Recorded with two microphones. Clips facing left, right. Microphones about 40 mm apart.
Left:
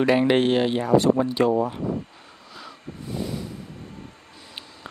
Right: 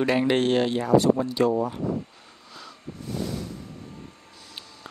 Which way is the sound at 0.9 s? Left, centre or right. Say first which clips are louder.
Left 1 dB; left.